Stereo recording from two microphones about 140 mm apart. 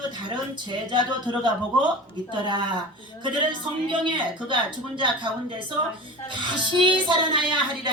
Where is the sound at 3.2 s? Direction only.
35° right (ahead or behind).